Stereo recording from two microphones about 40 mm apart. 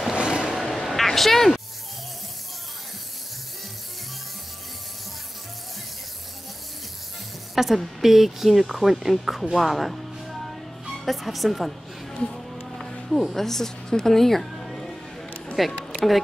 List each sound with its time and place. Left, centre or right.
0.1 s music: right
0.6 s music: centre
7.5 s a woman's voice: centre
9.1 s music: centre
12.1 s music: centre
13.1 s speech: centre